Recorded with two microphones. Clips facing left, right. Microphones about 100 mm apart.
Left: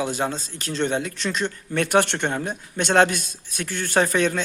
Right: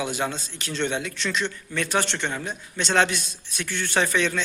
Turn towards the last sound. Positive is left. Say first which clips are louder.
# left 3 dB
turn(degrees=45)  # may be behind; listen again after turning